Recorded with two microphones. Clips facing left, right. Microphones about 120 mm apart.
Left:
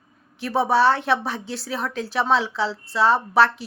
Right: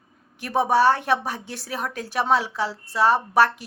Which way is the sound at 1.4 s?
45° right (ahead or behind).